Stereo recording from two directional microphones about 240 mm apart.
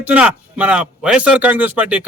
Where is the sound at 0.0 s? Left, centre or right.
Centre.